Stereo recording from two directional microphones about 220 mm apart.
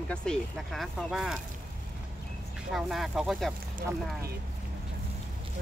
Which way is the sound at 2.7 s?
Centre (ahead or behind).